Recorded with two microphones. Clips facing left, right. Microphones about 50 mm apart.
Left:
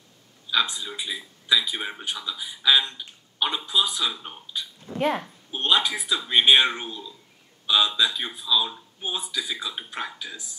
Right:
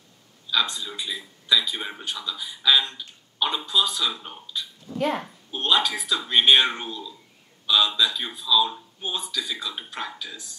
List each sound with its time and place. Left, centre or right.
0.5 s a man's voice: centre
4.9 s speech: left
5.5 s speech: centre
5.9 s a man's voice: centre